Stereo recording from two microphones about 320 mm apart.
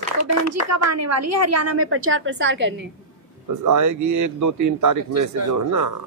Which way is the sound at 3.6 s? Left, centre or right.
Right.